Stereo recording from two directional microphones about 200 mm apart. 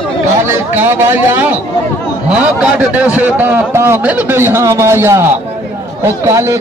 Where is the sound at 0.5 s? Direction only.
10° right (ahead or behind).